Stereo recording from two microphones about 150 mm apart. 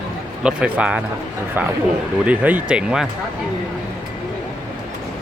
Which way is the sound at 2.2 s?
10° right (ahead or behind).